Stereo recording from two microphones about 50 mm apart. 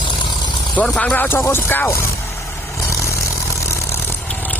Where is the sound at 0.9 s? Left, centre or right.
Left.